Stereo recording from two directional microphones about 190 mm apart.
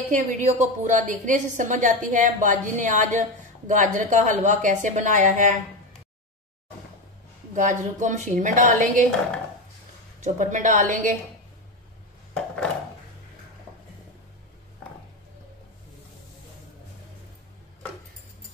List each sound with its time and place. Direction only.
0.1 s a woman's voice: 40° right (ahead or behind)
7.5 s a woman's voice: 40° right (ahead or behind)
10.2 s a woman's voice: 40° right (ahead or behind)